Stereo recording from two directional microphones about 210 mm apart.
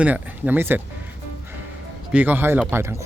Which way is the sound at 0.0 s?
5° right (ahead or behind).